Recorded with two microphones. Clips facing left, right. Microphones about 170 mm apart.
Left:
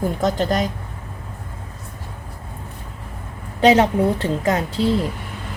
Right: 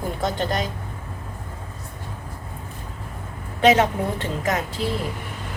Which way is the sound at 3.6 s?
35° left (ahead or behind).